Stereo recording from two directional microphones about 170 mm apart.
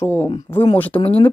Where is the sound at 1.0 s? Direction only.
35° left (ahead or behind).